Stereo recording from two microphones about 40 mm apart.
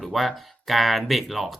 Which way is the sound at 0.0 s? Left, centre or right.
Centre.